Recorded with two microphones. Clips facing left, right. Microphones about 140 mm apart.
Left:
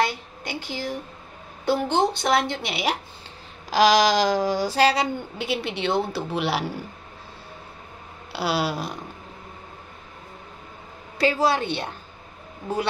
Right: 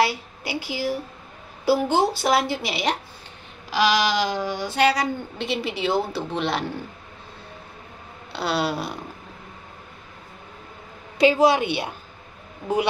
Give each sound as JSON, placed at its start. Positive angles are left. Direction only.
{"t": 0.0, "sound": "a woman's voice", "side_deg": -5}
{"t": 3.7, "sound": "a sound", "side_deg": 40}
{"t": 5.4, "sound": "a woman's voice", "side_deg": 0}
{"t": 8.3, "sound": "a woman's voice", "side_deg": 5}
{"t": 11.1, "sound": "a woman's voice", "side_deg": -15}